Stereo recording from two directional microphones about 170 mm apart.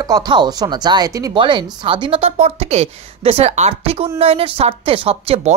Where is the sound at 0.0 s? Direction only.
25° right (ahead or behind).